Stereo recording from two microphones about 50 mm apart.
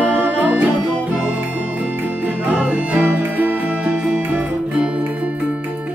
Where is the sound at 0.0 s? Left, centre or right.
Right.